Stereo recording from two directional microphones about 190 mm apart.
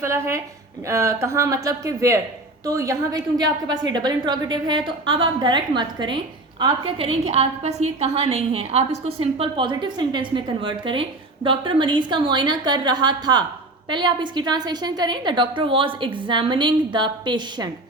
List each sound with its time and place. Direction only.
0.0 s a woman's voice: 15° right (ahead or behind)